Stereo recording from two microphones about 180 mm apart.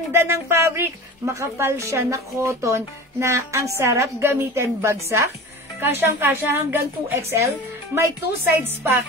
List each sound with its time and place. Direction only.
0.1 s a woman's voice: 15° right (ahead or behind)